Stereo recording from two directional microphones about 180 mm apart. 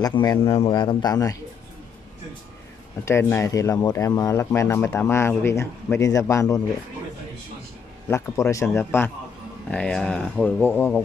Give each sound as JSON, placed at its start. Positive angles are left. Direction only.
{"t": 0.0, "sound": "speech", "side_deg": 20}
{"t": 3.1, "sound": "speech", "side_deg": 15}
{"t": 8.1, "sound": "speech", "side_deg": 15}